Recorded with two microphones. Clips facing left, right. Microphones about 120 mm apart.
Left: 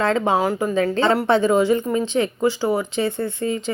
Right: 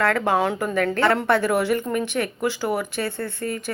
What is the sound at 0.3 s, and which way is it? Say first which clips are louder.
Speech: left 1 dB; centre (ahead or behind).